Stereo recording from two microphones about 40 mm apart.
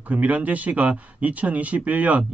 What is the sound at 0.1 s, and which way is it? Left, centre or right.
Speech, right.